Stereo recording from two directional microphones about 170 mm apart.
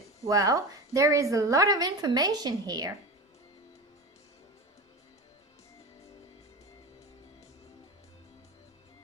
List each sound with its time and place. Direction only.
0.3 s a woman's voice: 20° right (ahead or behind)